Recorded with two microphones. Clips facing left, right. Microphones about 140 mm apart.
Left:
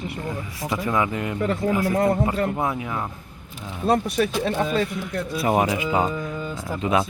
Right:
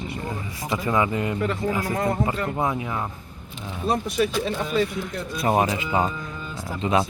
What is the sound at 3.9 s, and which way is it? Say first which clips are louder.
Speech: left 2 dB; 60° left (ahead or behind).